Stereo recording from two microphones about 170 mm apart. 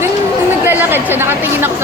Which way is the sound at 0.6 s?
10° right (ahead or behind).